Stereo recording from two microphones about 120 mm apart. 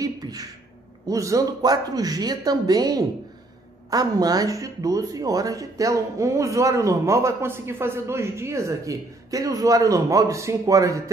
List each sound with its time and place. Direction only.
0.0 s beatboxing: 30° right (ahead or behind)
1.0 s speech: 25° right (ahead or behind)